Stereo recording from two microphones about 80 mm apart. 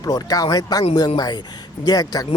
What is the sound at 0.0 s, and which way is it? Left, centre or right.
Speech, left.